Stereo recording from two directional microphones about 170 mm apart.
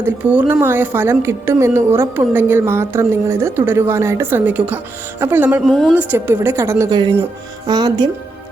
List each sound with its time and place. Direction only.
0.0 s a woman's voice: 10° right (ahead or behind)
5.6 s a woman's voice: 5° left (ahead or behind)
5.9 s a woman's voice: 10° right (ahead or behind)